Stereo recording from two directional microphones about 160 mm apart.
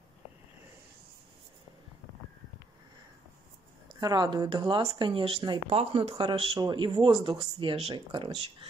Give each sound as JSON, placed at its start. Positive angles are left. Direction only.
{"t": 3.9, "sound": "speech", "side_deg": -25}